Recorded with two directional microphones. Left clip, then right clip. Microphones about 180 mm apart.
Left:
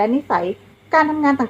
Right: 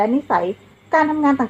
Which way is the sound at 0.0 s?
25° left (ahead or behind).